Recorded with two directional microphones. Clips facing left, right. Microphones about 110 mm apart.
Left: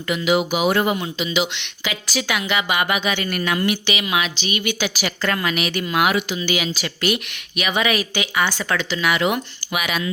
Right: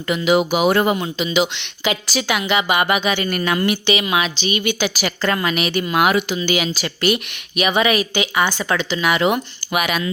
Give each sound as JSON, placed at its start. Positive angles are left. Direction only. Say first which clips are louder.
{"t": 0.1, "sound": "a woman's voice", "louder": "right 3 dB", "side_deg": -35}
{"t": 6.0, "sound": "a woman's voice", "louder": "right 2 dB", "side_deg": -40}
{"t": 9.7, "sound": "speech", "louder": "right 4 dB", "side_deg": -50}